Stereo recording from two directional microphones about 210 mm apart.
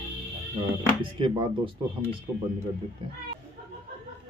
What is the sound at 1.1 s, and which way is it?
Speech, 25° right (ahead or behind).